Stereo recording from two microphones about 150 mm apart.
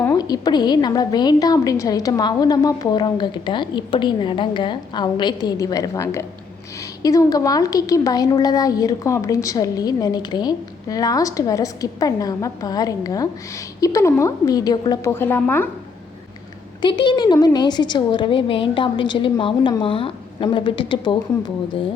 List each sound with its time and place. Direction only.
0.0 s a woman's voice: 25° left (ahead or behind)
15.1 s a woman's voice: 15° left (ahead or behind)
16.8 s a woman's voice: 30° left (ahead or behind)